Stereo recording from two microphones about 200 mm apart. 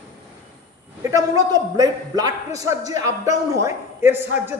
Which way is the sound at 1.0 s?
15° right (ahead or behind).